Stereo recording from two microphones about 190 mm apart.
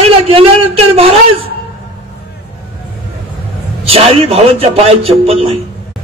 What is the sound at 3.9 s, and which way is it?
A man's voice, 30° right (ahead or behind).